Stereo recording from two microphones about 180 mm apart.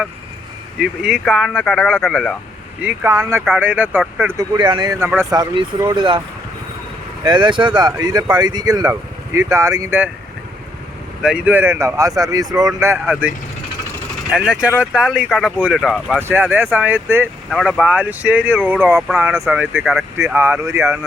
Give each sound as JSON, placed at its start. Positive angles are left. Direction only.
{"t": 0.8, "sound": "speech", "side_deg": -5}
{"t": 2.8, "sound": "speech", "side_deg": -15}
{"t": 4.5, "sound": "speech", "side_deg": -25}
{"t": 7.3, "sound": "speech", "side_deg": -25}
{"t": 11.2, "sound": "speech", "side_deg": -5}
{"t": 17.5, "sound": "speech", "side_deg": 0}
{"t": 20.1, "sound": "speech", "side_deg": -15}